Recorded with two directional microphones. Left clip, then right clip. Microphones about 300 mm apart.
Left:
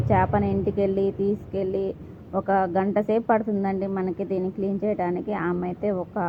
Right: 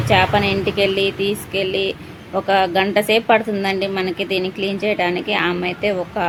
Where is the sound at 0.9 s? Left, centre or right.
Right.